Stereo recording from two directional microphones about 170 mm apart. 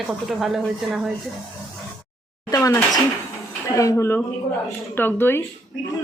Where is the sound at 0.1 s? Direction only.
Centre (ahead or behind).